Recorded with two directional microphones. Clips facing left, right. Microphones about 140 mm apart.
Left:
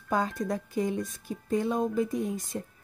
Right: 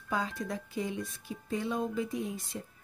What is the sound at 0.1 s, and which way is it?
Speech, 45° left (ahead or behind).